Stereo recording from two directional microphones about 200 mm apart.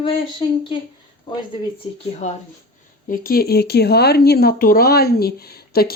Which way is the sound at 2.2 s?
35° left (ahead or behind).